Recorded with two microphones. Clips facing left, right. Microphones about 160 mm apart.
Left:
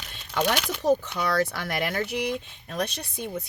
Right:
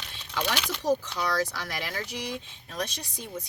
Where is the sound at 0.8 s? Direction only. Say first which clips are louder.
Left 4 dB; 60° left (ahead or behind).